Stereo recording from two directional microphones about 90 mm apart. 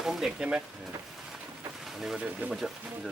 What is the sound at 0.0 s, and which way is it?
Speech, 5° right (ahead or behind).